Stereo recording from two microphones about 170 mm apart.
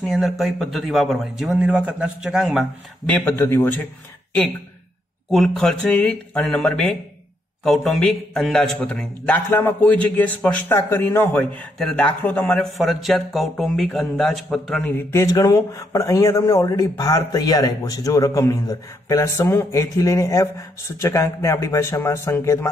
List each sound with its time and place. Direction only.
0.0 s speech: centre (ahead or behind)
3.3 s a man's voice: 15° left (ahead or behind)
5.3 s a man's voice: centre (ahead or behind)